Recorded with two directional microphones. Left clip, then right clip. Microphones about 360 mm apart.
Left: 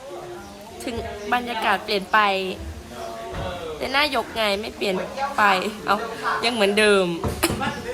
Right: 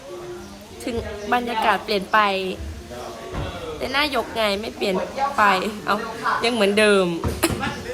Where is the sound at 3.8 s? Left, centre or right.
Centre.